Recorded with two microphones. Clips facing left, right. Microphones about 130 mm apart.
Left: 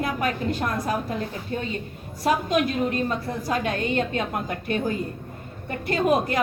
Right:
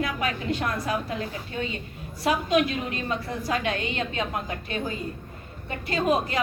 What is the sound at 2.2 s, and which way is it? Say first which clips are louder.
A woman's voice: left 1 dB; 45° left (ahead or behind).